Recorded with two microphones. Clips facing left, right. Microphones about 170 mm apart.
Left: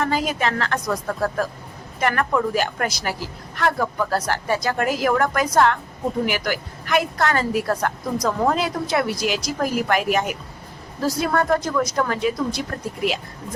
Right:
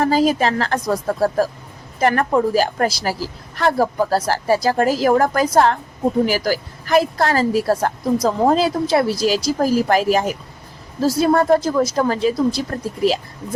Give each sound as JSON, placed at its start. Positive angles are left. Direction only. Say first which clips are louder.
{"t": 0.0, "sound": "a woman's voice", "louder": "right 6 dB", "side_deg": -35}